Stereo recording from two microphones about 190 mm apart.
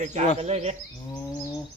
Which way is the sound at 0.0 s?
40° right (ahead or behind).